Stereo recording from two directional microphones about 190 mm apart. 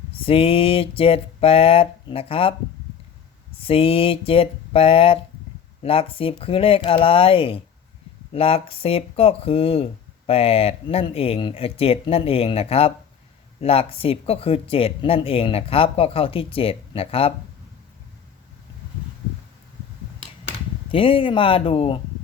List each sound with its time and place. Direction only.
0.1 s speech: 30° left (ahead or behind)
3.6 s speech: 30° left (ahead or behind)
20.9 s speech: 30° left (ahead or behind)